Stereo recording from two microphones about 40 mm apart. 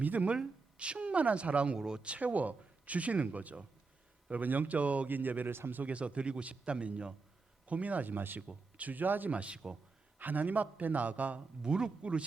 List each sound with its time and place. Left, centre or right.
0.0 s speech: right
0.8 s speech: right
1.8 s speech: centre
2.0 s speech: right
4.8 s speech: right
5.0 s speech: right
5.5 s speech: right
5.7 s speech: right
7.7 s speech: right
9.3 s speech: right
10.2 s speech: right
11.6 s speech: right